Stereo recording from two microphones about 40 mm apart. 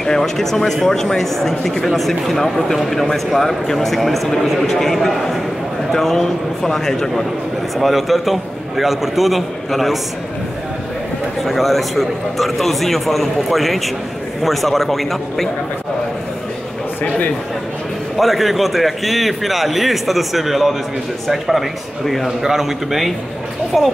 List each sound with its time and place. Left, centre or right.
0.0 s a man's voice: centre
7.7 s speech: centre
11.4 s speech: centre
18.1 s speech: centre
22.4 s a man's voice: centre